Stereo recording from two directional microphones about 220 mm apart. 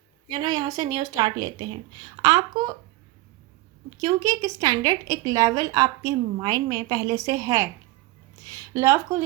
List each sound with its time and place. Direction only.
0.3 s a woman's voice: 20° right (ahead or behind)
3.9 s a woman's voice: 15° right (ahead or behind)